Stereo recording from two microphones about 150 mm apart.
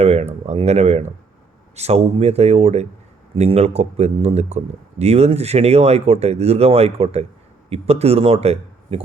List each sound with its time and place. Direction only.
0.0 s speech: 45° right (ahead or behind)